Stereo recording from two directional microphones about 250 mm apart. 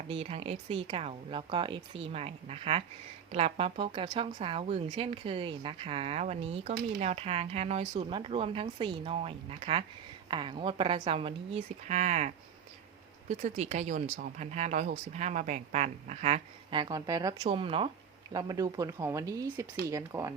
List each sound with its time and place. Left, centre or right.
0.1 s a woman's voice: right